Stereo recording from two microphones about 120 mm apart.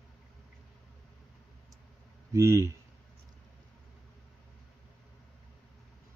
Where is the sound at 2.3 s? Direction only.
25° right (ahead or behind).